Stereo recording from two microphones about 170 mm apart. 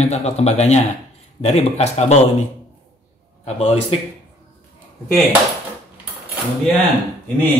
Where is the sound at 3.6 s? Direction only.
35° left (ahead or behind).